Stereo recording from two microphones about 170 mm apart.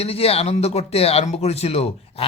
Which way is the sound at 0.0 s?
35° left (ahead or behind).